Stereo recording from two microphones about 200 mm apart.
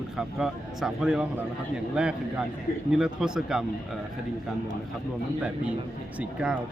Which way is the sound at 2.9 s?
5° right (ahead or behind).